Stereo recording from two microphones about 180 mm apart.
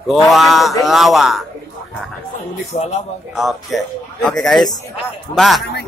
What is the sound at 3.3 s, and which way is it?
A man's voice, centre (ahead or behind).